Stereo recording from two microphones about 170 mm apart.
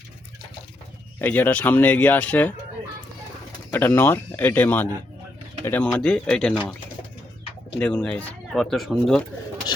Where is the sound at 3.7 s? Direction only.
10° left (ahead or behind).